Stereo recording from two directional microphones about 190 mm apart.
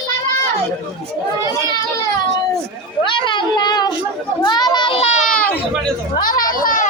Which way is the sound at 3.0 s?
25° left (ahead or behind).